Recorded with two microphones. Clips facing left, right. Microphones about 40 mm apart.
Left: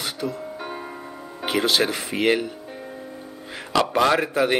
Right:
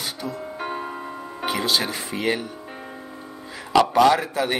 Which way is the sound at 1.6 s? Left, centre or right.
Left.